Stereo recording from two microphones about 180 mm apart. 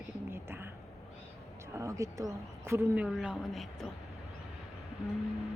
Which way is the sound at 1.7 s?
15° right (ahead or behind).